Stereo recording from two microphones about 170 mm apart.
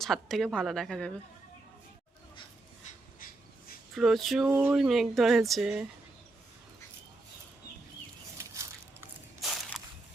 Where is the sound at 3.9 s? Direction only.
Centre (ahead or behind).